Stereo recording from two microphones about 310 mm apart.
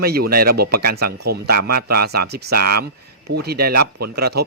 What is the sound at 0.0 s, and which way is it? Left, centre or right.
Speech, right.